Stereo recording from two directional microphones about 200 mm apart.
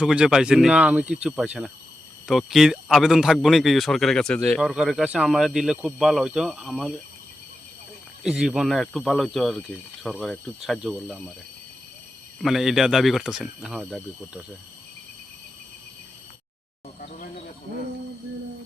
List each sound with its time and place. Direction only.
0.0 s speech: 5° right (ahead or behind)
8.2 s speech: 5° right (ahead or behind)
12.4 s speech: centre (ahead or behind)
17.0 s a sound: 35° left (ahead or behind)